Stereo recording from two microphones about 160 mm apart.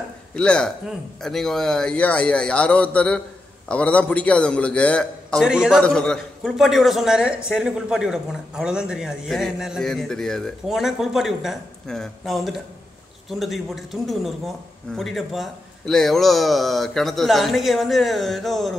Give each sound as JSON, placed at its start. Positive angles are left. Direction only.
{"t": 0.4, "sound": "speech", "side_deg": 5}